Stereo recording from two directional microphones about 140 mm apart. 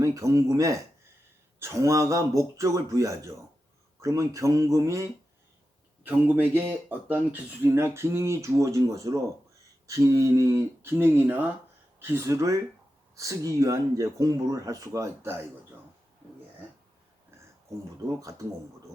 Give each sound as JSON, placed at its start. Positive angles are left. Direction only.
{"t": 0.0, "sound": "speech", "side_deg": -20}
{"t": 18.2, "sound": "speech", "side_deg": -25}